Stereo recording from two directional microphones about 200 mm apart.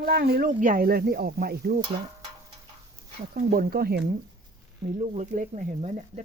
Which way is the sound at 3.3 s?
50° right (ahead or behind).